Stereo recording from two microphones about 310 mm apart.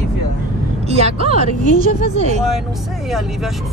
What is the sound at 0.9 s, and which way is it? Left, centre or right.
Speech, centre.